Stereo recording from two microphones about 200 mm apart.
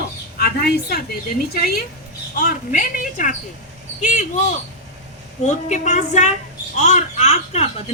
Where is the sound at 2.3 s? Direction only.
40° left (ahead or behind).